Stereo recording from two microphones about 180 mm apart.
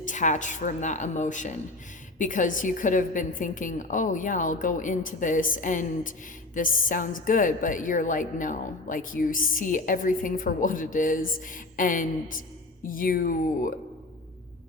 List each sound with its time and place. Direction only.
0.0 s a woman's voice: 45° left (ahead or behind)